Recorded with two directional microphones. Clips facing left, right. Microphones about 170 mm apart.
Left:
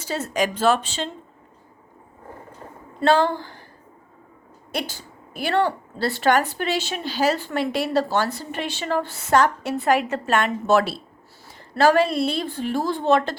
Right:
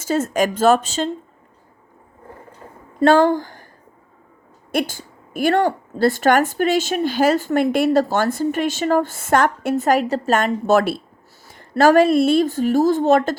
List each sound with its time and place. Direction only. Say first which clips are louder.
0.0 s a woman's voice: right 5 dB; 45° right (ahead or behind)
3.0 s speech: right 5 dB; 45° right (ahead or behind)
4.7 s a woman's voice: right 7 dB; 50° right (ahead or behind)